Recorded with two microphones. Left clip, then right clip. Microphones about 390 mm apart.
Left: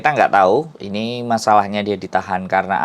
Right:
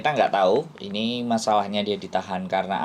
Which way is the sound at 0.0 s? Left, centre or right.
Left.